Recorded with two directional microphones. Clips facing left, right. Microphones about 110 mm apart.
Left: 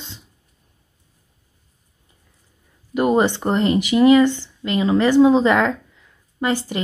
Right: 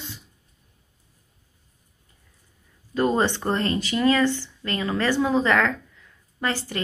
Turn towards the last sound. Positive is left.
turn(degrees=20)  # may be behind; listen again after turning